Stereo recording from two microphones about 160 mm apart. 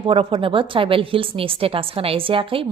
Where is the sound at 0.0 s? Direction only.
35° right (ahead or behind).